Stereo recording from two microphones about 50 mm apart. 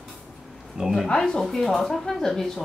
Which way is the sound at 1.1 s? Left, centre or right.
Centre.